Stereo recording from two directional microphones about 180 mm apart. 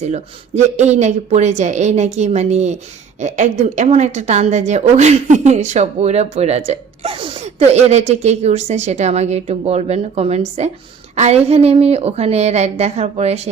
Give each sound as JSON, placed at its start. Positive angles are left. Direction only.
{"t": 0.0, "sound": "a woman's voice", "side_deg": -40}